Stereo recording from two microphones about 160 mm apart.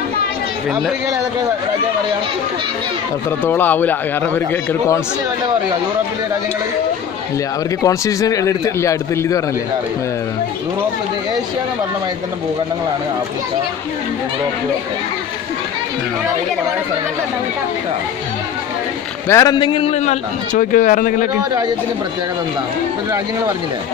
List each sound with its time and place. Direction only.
3.3 s a man's voice: 15° left (ahead or behind)
7.8 s a man's voice: 20° left (ahead or behind)
19.2 s a man's voice: 20° left (ahead or behind); by 20.2 s 45° left (ahead or behind)
20.5 s speech: 60° left (ahead or behind)